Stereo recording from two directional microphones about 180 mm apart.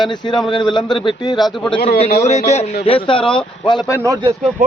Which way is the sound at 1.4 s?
Centre (ahead or behind).